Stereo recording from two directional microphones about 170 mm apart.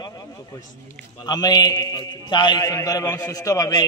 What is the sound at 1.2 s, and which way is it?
A man's voice, 25° left (ahead or behind).